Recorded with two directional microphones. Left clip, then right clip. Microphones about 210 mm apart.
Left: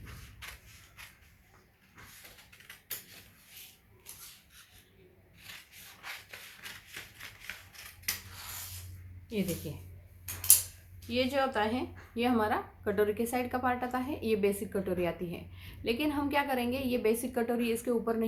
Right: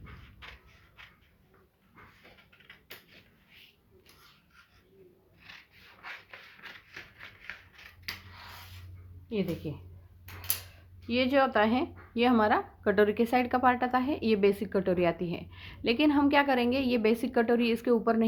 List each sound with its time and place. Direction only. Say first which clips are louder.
0.4 s a sound: left 2 dB; centre (ahead or behind)
6.6 s typewriter: even; centre (ahead or behind)
9.6 s speech: right 4 dB; 35° right (ahead or behind)
11.1 s speech: right 4 dB; 45° right (ahead or behind)